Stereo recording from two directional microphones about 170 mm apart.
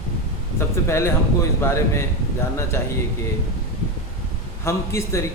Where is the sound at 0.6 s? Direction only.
15° left (ahead or behind).